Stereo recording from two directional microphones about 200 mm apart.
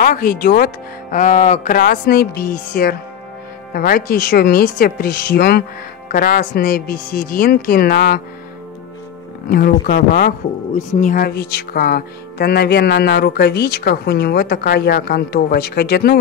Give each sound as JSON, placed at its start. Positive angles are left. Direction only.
{"t": 0.0, "sound": "speech", "side_deg": 45}
{"t": 9.5, "sound": "speech", "side_deg": 50}